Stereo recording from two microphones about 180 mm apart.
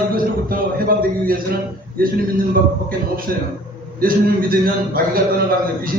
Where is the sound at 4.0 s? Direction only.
55° right (ahead or behind).